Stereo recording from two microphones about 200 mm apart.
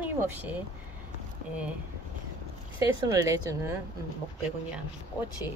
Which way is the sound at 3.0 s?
15° right (ahead or behind).